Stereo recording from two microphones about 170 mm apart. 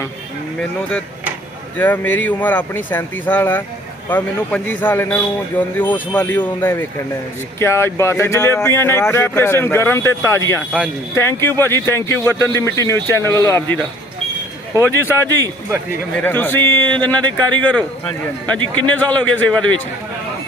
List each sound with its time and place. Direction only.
1.8 s a man's voice: 10° left (ahead or behind)
14.8 s a man's voice: 15° left (ahead or behind)